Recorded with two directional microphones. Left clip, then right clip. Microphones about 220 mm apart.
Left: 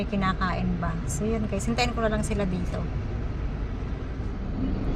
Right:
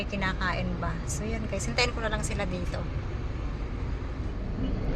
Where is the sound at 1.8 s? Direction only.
Centre (ahead or behind).